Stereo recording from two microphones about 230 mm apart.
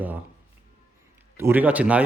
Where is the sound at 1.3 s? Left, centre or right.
Centre.